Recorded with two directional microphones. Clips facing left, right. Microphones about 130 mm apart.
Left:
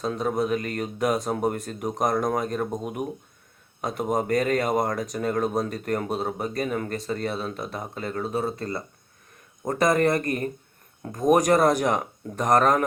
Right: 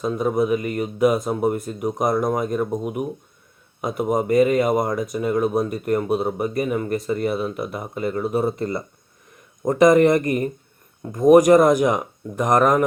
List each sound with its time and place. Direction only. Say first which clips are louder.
0.0 s speech: right 5 dB; 10° right (ahead or behind)